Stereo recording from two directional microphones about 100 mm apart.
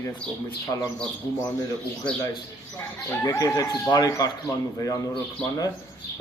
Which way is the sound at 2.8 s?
25° left (ahead or behind).